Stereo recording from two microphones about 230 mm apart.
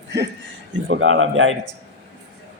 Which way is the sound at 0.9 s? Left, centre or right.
Right.